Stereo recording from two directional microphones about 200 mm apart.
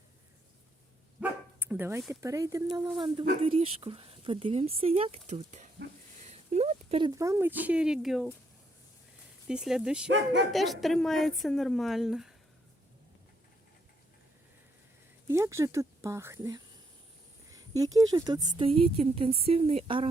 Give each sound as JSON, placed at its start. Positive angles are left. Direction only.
{"t": 1.2, "sound": "dog", "side_deg": -10}
{"t": 2.2, "sound": "speech", "side_deg": -15}
{"t": 6.1, "sound": "a sound", "side_deg": -35}
{"t": 7.2, "sound": "speech", "side_deg": -15}
{"t": 9.5, "sound": "a woman's voice", "side_deg": -5}
{"t": 10.1, "sound": "speech", "side_deg": -65}
{"t": 10.5, "sound": "a woman's voice", "side_deg": 0}
{"t": 15.3, "sound": "speech", "side_deg": -15}